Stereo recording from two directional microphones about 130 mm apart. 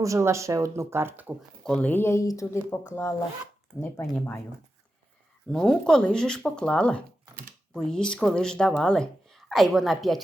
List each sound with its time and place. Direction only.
0.0 s speech: 25° right (ahead or behind)
1.6 s speech: 10° left (ahead or behind)
5.5 s a woman's voice: centre (ahead or behind)